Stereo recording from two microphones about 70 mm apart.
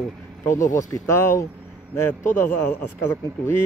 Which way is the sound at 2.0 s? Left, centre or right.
Left.